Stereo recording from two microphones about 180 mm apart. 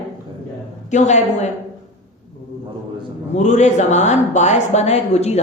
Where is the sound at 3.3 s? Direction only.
40° left (ahead or behind).